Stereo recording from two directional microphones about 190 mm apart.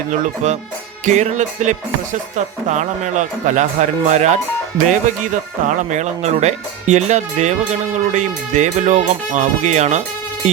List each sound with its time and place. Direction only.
1.0 s speech: 40° right (ahead or behind)